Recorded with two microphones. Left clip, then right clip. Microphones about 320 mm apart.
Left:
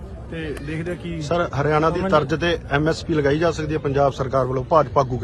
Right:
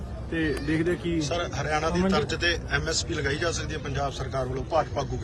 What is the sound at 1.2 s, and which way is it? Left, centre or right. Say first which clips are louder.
A man's voice: left 7 dB; centre.